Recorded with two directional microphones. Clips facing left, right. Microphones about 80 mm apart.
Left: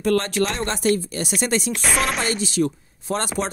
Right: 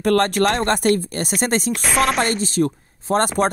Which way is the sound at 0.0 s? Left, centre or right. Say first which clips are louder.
Right 4 dB; right.